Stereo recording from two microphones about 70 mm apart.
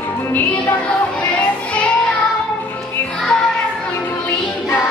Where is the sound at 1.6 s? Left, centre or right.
Centre.